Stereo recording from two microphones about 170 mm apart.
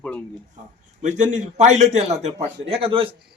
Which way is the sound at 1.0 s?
45° right (ahead or behind).